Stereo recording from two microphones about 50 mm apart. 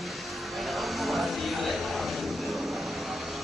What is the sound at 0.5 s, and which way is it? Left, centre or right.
Vehicle, centre.